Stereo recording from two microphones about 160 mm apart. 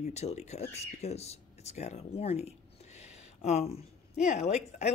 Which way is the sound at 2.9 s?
45° left (ahead or behind).